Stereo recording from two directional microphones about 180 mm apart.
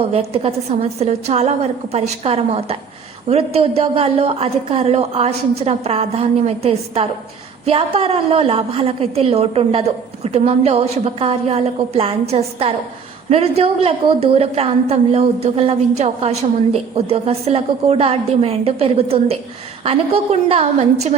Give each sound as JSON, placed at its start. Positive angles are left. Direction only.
{"t": 0.1, "sound": "a woman's voice", "side_deg": -35}